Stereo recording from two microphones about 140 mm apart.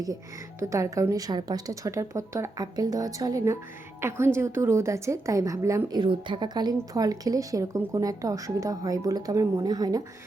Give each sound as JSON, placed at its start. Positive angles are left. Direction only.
{"t": 0.6, "sound": "a woman's voice", "side_deg": -20}
{"t": 6.0, "sound": "a woman's voice", "side_deg": -35}